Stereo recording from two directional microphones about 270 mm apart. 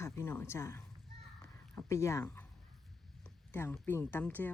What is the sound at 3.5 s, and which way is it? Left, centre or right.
Speech, centre.